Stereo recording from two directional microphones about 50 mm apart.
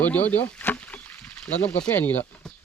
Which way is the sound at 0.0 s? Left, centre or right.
Left.